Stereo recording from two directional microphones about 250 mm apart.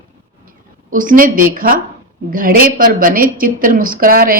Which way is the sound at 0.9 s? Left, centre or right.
Right.